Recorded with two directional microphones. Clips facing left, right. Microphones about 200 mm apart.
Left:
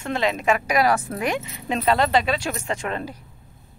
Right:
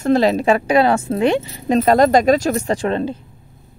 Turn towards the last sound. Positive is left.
turn(degrees=-30)  # may be behind; listen again after turning